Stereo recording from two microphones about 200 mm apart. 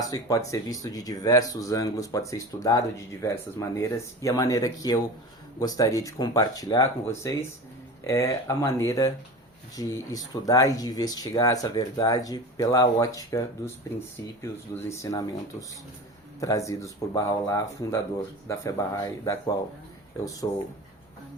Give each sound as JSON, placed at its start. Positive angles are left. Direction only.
{"t": 0.0, "sound": "speech", "side_deg": 15}
{"t": 14.7, "sound": "speech", "side_deg": 15}
{"t": 16.4, "sound": "speech", "side_deg": 15}